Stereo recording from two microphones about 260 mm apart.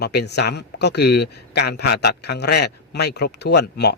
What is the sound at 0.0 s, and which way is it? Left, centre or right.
Speech, left.